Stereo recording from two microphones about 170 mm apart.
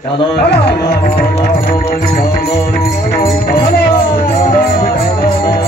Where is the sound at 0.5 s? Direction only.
75° left (ahead or behind).